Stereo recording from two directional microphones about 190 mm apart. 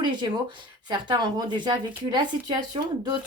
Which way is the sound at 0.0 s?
25° right (ahead or behind).